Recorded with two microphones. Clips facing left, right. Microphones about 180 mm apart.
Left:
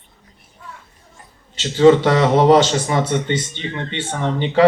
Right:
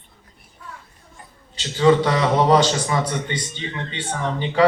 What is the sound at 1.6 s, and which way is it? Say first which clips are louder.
A man's voice: left 5 dB; 25° left (ahead or behind).